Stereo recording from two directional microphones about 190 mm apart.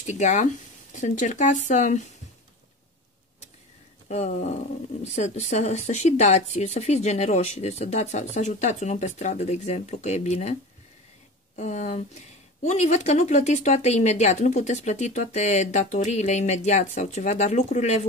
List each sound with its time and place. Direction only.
0.0 s speech: 40° left (ahead or behind)
4.1 s speech: 35° left (ahead or behind)